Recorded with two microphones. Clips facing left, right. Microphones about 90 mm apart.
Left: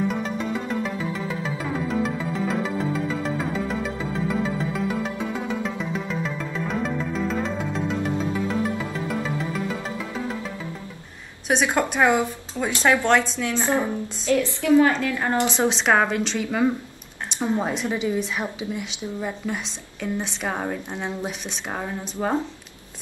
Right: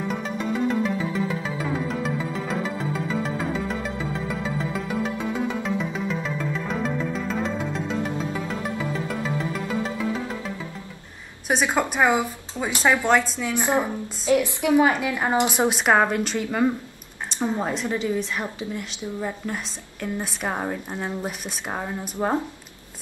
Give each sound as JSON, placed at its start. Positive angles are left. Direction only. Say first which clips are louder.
{"t": 0.1, "sound": "music", "louder": "even", "side_deg": 0}
{"t": 11.4, "sound": "a woman's voice", "louder": "left 1 dB", "side_deg": -5}
{"t": 17.6, "sound": "a woman's voice", "louder": "even", "side_deg": 15}
{"t": 20.2, "sound": "a woman's voice", "louder": "right 1 dB", "side_deg": -10}